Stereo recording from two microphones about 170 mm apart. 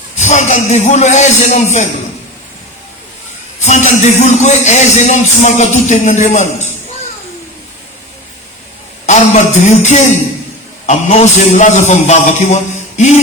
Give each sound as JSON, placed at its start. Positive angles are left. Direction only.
{"t": 0.2, "sound": "music", "side_deg": 45}
{"t": 3.7, "sound": "music", "side_deg": 45}
{"t": 9.0, "sound": "music", "side_deg": 45}